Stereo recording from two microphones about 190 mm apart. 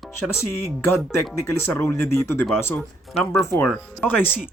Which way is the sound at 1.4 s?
10° left (ahead or behind).